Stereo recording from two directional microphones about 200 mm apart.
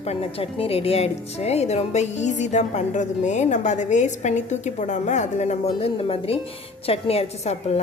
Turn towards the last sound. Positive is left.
turn(degrees=30)  # may be behind; listen again after turning